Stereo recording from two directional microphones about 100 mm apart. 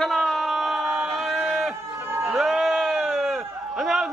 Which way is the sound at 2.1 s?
25° right (ahead or behind).